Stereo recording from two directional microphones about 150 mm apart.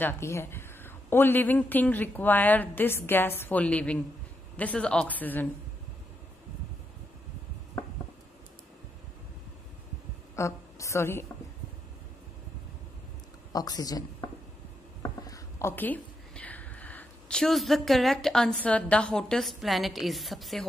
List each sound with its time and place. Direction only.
0.0 s a woman's voice: 15° left (ahead or behind)
10.3 s a woman's voice: 20° left (ahead or behind)
13.5 s a woman's voice: 25° left (ahead or behind); by 20.6 s centre (ahead or behind)